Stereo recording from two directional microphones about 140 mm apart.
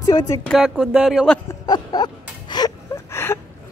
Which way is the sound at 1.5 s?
30° left (ahead or behind).